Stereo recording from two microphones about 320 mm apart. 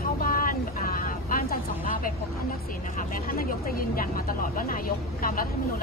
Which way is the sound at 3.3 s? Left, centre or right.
Left.